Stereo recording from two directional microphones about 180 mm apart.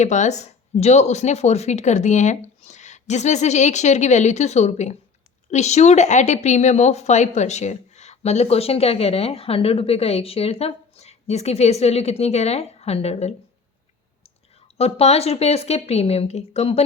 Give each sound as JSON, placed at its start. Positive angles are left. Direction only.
{"t": 0.0, "sound": "a woman's voice", "side_deg": 40}
{"t": 14.8, "sound": "a woman's voice", "side_deg": 35}